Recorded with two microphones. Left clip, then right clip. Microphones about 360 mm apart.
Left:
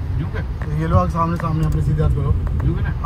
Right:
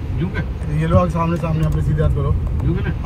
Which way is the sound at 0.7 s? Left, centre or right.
Left.